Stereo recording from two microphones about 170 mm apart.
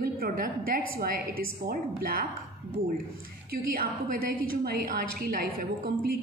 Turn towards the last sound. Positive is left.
turn(degrees=-55)  # may be behind; listen again after turning